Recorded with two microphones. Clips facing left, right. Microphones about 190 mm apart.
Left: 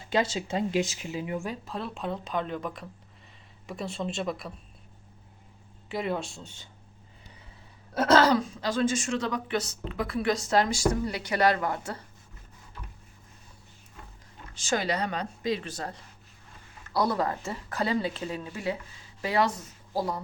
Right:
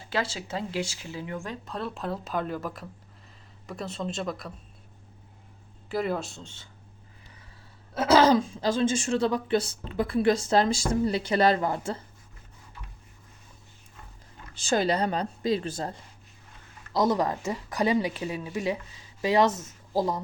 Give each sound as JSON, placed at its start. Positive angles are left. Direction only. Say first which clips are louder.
{"t": 0.1, "sound": "speech", "louder": "left 3 dB", "side_deg": 20}
{"t": 1.6, "sound": "speech", "louder": "right 1 dB", "side_deg": 0}
{"t": 5.9, "sound": "speech", "louder": "right 2 dB", "side_deg": 0}
{"t": 7.9, "sound": "speech", "louder": "even", "side_deg": -5}
{"t": 8.2, "sound": "speech", "louder": "right 3 dB", "side_deg": -25}
{"t": 14.7, "sound": "a woman's voice", "louder": "right 4 dB", "side_deg": -30}